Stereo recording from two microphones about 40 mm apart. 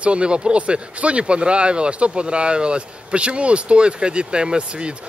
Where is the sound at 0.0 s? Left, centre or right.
Right.